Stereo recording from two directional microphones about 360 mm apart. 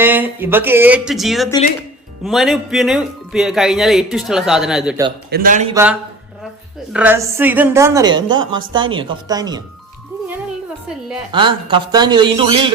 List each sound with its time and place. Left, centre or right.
0.0 s speech: centre
5.3 s a man's voice: right
5.7 s a woman's voice: centre
11.3 s a woman's voice: centre